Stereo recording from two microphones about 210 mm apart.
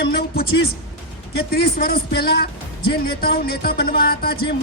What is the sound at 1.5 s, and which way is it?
Speech, 45° left (ahead or behind).